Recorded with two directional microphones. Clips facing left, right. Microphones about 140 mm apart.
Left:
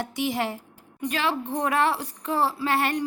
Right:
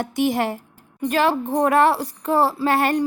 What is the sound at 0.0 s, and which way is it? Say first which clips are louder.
A woman's voice: right 6 dB; 50° right (ahead or behind).